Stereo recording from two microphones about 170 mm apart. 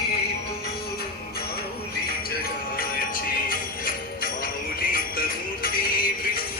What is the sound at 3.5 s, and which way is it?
Jingle bell, 60° left (ahead or behind).